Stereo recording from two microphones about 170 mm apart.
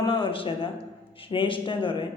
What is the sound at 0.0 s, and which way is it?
A man's voice, 30° left (ahead or behind).